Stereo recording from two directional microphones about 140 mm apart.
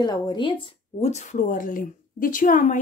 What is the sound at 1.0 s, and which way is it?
A woman's voice, 55° left (ahead or behind).